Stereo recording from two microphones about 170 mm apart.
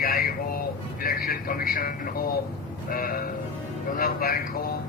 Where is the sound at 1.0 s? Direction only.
60° left (ahead or behind).